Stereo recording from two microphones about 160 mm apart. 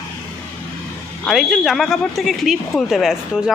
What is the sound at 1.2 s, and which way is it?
Speech, centre (ahead or behind).